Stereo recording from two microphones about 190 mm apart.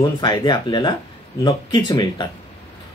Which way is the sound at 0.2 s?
25° left (ahead or behind).